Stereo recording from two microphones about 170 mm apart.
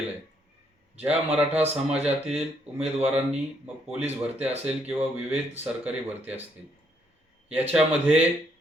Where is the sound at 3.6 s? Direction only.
5° right (ahead or behind).